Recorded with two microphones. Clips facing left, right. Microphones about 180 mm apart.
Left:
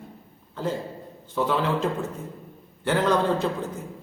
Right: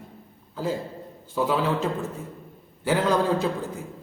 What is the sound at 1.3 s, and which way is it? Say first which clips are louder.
A man's voice: even; 5° right (ahead or behind).